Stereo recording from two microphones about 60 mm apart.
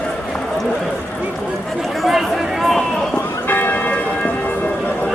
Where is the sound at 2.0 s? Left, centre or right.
Centre.